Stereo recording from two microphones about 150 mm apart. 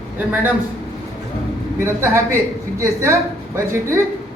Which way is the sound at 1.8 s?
15° right (ahead or behind).